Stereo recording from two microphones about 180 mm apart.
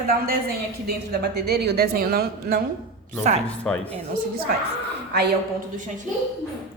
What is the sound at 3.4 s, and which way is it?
Speech, 5° left (ahead or behind).